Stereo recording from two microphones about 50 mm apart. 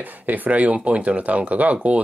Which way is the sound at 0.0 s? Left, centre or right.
Right.